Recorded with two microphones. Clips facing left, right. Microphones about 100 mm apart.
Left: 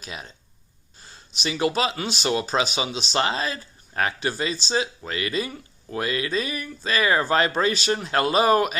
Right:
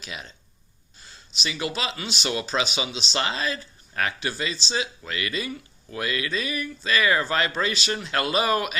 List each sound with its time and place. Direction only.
0.0 s speech: 40° left (ahead or behind)
3.2 s speech: 35° left (ahead or behind)